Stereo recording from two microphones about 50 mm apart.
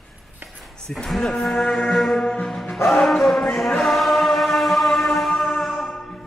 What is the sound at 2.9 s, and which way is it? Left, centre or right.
Speech, centre.